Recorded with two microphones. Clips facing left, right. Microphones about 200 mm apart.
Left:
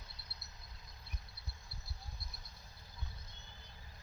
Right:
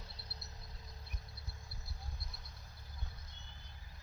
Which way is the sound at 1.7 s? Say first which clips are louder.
Right 1 dB; 50° right (ahead or behind).